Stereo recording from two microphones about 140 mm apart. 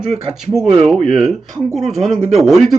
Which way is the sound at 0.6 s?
50° right (ahead or behind).